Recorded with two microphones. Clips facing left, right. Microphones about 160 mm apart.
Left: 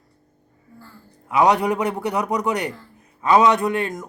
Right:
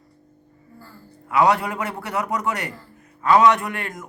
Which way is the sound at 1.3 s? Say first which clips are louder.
Left 2 dB; 20° left (ahead or behind).